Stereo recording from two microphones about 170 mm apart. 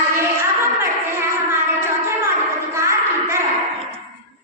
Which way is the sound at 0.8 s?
15° right (ahead or behind).